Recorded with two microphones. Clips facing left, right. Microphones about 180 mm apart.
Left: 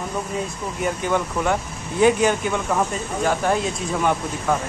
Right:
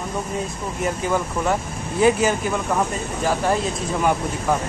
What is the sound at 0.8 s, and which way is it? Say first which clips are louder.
Speech: even; 5° right (ahead or behind).